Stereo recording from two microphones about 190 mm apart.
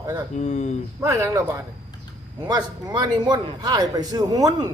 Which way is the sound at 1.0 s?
15° right (ahead or behind).